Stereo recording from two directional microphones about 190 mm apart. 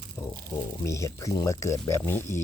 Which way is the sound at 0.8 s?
15° left (ahead or behind).